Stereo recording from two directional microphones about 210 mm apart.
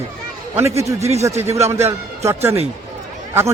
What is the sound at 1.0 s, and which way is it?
Speech, 30° right (ahead or behind).